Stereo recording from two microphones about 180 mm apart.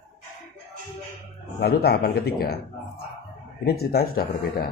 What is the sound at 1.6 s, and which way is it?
Speech, 60° left (ahead or behind).